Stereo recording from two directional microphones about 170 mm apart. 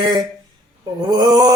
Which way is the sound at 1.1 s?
20° right (ahead or behind).